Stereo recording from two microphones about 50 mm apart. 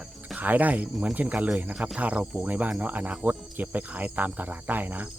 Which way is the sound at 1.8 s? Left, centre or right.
Right.